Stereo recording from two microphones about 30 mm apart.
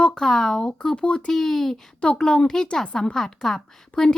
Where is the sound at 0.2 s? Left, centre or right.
Centre.